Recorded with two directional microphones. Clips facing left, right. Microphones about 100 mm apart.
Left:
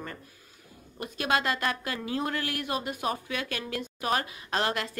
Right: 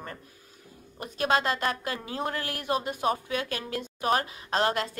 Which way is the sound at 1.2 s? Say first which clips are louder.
Right 2 dB; 30° right (ahead or behind).